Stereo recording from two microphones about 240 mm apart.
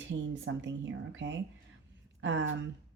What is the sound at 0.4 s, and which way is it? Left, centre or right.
Speech, right.